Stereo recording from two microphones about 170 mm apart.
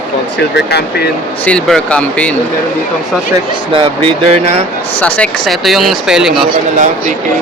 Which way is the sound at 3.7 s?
30° right (ahead or behind).